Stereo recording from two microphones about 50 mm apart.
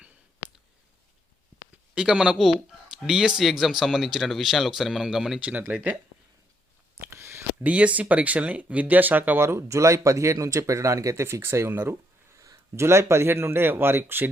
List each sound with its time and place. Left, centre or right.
2.0 s speech: centre
5.5 s speech: right
7.1 s a sound: right
7.6 s speech: right
9.4 s speech: right
11.7 s speech: right
12.3 s speech: right